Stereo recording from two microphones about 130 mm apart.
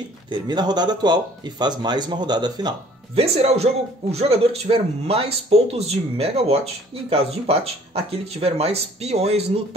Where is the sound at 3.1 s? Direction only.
50° right (ahead or behind).